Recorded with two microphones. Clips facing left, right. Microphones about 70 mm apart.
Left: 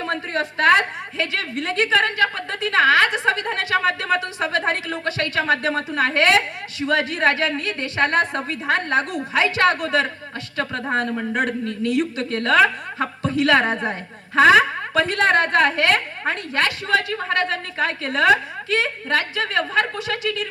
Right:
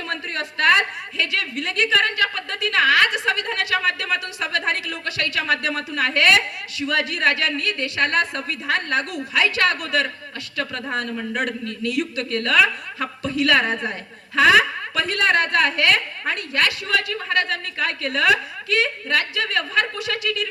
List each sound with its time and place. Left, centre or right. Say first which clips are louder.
0.0 s a woman's voice: left 4 dB; left